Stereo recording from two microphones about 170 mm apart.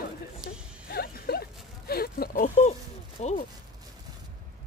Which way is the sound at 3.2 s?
40° left (ahead or behind).